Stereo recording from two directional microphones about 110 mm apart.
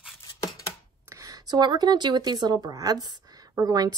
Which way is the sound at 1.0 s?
30° right (ahead or behind).